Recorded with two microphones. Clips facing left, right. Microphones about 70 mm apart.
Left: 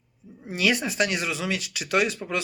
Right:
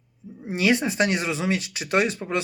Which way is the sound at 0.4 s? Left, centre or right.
Right.